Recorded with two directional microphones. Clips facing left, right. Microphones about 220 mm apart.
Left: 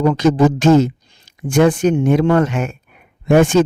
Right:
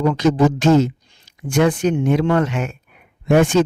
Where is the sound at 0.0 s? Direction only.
45° left (ahead or behind).